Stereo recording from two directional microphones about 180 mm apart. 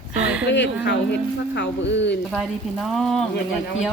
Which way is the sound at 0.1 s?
5° right (ahead or behind).